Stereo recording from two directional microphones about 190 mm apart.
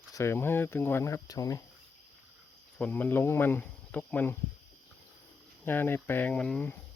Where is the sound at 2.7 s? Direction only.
10° left (ahead or behind).